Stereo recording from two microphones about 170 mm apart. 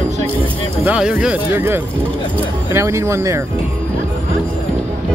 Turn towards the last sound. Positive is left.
turn(degrees=-15)  # may be behind; listen again after turning